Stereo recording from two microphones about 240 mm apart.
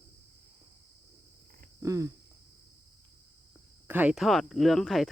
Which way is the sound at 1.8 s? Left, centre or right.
Centre.